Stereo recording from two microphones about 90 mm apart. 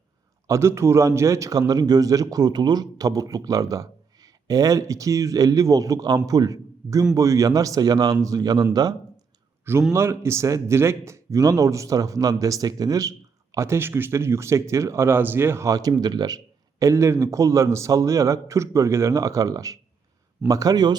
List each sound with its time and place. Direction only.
0.4 s speech: 30° right (ahead or behind)
9.9 s speech: 30° right (ahead or behind); by 16.4 s 50° right (ahead or behind)
16.8 s speech: 35° right (ahead or behind); by 20.9 s 50° right (ahead or behind)